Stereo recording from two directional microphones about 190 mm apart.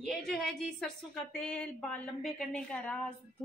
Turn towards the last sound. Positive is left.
turn(degrees=5)  # may be behind; listen again after turning